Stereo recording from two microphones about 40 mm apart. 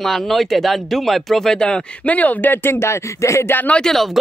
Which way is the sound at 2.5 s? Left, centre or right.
Left.